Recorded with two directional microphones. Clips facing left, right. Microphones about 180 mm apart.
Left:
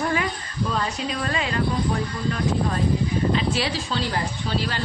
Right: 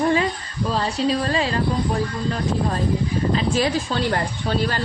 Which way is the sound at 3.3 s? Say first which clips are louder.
Right 3 dB; 40° right (ahead or behind).